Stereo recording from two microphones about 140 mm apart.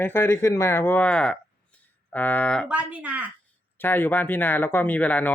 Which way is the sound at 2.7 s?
10° right (ahead or behind).